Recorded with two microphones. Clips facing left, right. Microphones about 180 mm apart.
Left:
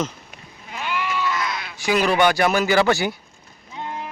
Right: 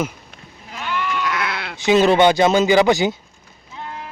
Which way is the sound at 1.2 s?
70° right (ahead or behind).